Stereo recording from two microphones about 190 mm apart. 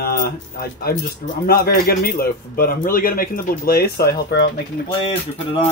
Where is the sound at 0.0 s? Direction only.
50° left (ahead or behind).